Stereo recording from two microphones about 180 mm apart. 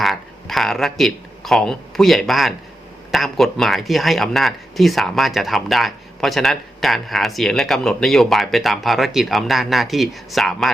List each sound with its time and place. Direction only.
0.0 s speech: centre (ahead or behind)